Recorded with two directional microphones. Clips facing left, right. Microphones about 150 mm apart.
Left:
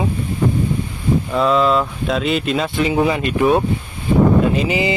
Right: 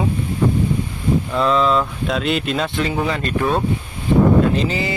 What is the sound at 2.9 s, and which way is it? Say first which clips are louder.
Mantra: left 4 dB; 10° left (ahead or behind).